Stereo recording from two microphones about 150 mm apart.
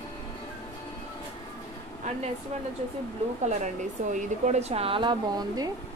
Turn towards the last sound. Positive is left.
turn(degrees=-25)  # may be behind; listen again after turning